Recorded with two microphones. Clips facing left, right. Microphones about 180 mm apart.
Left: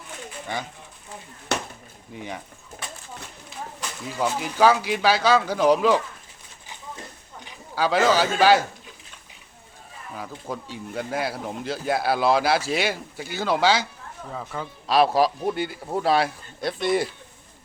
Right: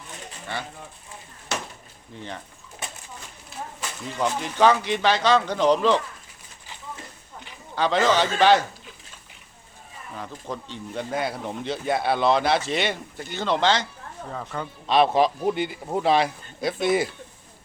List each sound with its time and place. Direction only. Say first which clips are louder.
1.5 s a sound: left 3 dB; 65° left (ahead or behind)
2.1 s speech: left 2 dB; 10° left (ahead or behind)
3.8 s speech: even; 5° left (ahead or behind)
7.8 s speech: left 1 dB; 5° left (ahead or behind)
10.2 s speech: left 1 dB; 5° left (ahead or behind)